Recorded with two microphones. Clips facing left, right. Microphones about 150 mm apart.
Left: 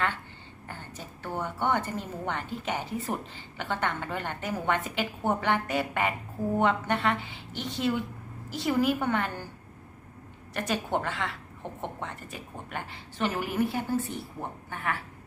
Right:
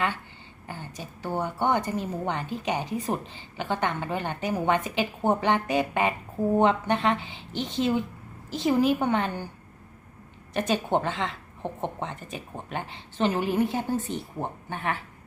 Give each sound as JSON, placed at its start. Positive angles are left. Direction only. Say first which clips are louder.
{"t": 0.7, "sound": "a woman's voice", "louder": "right 4 dB", "side_deg": -15}
{"t": 10.5, "sound": "a woman's voice", "louder": "right 4 dB", "side_deg": -20}